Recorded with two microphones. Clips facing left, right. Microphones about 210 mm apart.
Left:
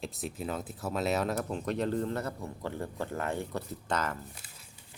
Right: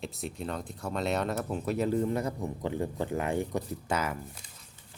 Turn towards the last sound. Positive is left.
turn(degrees=5)  # may be behind; listen again after turning